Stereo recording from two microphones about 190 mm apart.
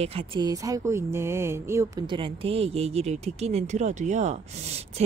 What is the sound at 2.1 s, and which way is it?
Speech, 25° right (ahead or behind).